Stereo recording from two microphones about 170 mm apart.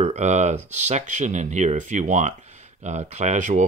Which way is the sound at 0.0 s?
40° right (ahead or behind).